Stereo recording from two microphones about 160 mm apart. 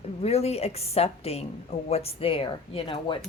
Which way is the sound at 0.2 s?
40° left (ahead or behind).